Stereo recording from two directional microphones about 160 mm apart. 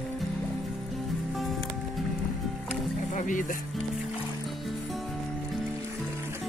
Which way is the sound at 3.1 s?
55° left (ahead or behind).